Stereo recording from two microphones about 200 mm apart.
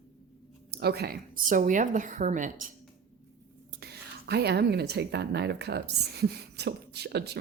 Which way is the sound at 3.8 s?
55° right (ahead or behind).